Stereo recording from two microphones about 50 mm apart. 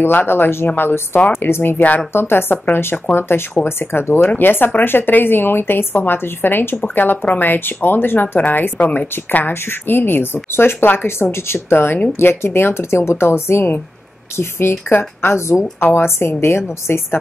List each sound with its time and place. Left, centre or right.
0.0 s a woman's voice: left
1.8 s speech: left
2.1 s a woman's voice: left